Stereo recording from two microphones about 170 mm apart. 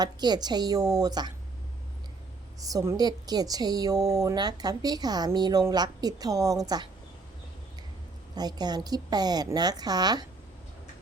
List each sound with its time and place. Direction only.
0.0 s a woman's voice: 25° right (ahead or behind)
2.6 s a woman's voice: 20° right (ahead or behind)
8.4 s a woman's voice: 25° right (ahead or behind)